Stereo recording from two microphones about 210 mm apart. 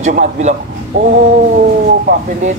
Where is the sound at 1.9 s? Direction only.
40° right (ahead or behind).